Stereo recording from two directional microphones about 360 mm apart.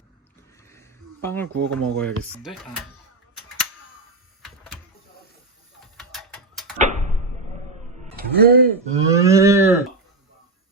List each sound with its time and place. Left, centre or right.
0.7 s a sound: centre
1.5 s speech: right
2.0 s speech: centre
4.4 s a sound: centre
6.0 s tick-tock: centre
8.1 s speech: right; by 9.7 s centre